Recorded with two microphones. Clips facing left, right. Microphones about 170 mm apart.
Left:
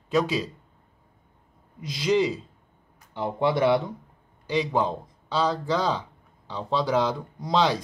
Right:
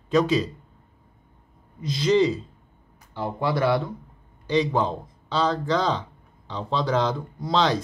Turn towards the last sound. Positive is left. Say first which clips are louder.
# right 1 dB
turn(degrees=10)  # may be behind; listen again after turning